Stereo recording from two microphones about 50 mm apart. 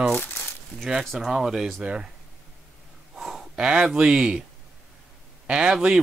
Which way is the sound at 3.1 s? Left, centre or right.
Centre.